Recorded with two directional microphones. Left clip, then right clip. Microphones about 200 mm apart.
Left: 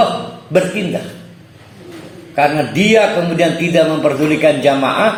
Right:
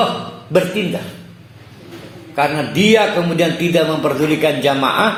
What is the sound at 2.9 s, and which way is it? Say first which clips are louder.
Speech: left 2 dB; 35° right (ahead or behind).